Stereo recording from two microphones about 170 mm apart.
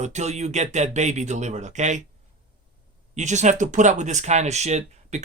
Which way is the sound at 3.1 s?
45° right (ahead or behind).